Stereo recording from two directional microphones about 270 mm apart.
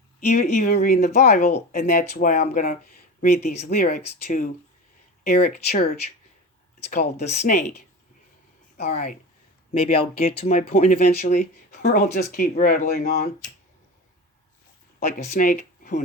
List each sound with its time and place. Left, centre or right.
0.3 s speech: left
8.8 s speech: left
15.4 s speech: left